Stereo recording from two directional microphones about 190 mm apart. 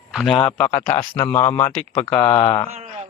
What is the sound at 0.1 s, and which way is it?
Speech, 5° left (ahead or behind).